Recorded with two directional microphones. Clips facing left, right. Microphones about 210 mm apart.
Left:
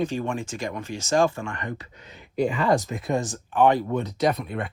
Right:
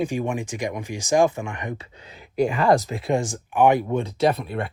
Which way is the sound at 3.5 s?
10° right (ahead or behind).